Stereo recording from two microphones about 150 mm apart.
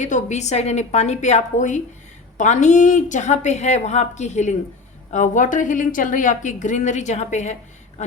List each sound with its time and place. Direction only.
0.0 s a woman's voice: 50° left (ahead or behind)